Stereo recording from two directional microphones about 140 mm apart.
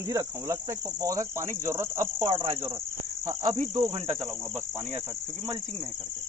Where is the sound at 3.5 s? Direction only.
55° right (ahead or behind).